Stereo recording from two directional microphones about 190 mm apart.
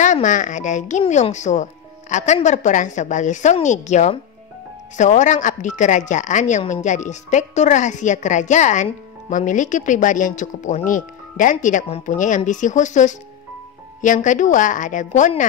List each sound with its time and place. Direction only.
0.0 s a woman's voice: 40° left (ahead or behind)